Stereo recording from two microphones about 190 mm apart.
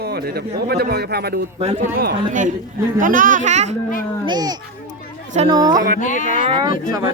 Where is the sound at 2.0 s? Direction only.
50° right (ahead or behind).